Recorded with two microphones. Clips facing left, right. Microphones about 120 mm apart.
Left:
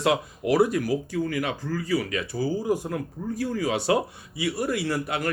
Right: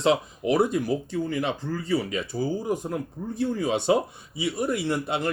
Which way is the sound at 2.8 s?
20° right (ahead or behind).